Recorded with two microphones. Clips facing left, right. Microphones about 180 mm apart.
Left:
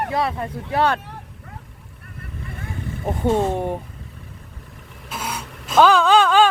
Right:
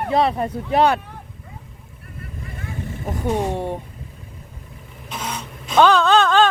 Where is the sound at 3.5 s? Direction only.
15° left (ahead or behind).